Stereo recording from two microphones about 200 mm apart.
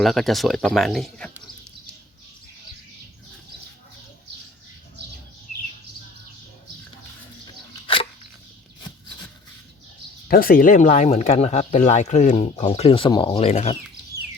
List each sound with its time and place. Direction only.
0.0 s speech: centre (ahead or behind)
10.2 s speech: 45° left (ahead or behind)